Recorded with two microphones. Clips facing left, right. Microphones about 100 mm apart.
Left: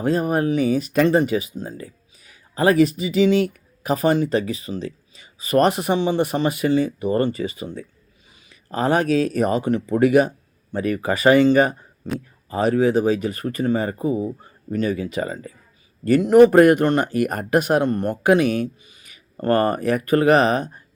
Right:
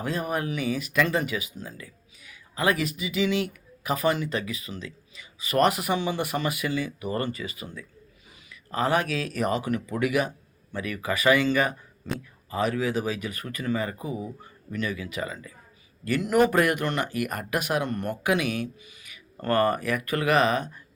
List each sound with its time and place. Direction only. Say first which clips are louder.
0.0 s speech: left 9 dB; 35° left (ahead or behind)